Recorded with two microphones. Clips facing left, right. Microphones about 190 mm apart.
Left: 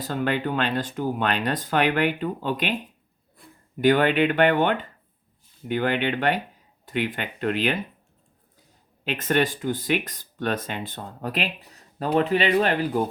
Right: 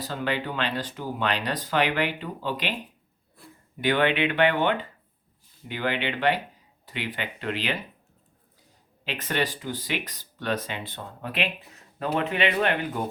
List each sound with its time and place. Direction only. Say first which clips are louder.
0.0 s speech: left 4 dB; 50° left (ahead or behind)
3.8 s speech: left 4 dB; 40° left (ahead or behind)
9.0 s speech: left 5 dB; 50° left (ahead or behind)